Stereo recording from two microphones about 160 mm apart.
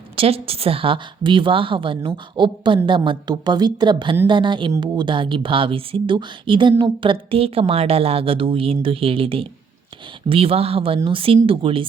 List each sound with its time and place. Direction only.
0.2 s a woman's voice: 35° right (ahead or behind)